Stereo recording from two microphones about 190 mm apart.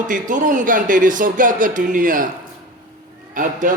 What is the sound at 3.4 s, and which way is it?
Speech, 40° right (ahead or behind).